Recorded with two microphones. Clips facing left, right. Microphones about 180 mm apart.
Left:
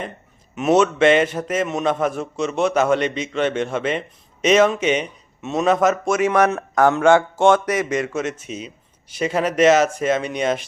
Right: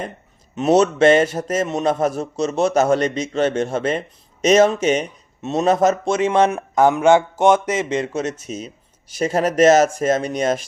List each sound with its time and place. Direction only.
0.5 s a man's voice: 35° right (ahead or behind)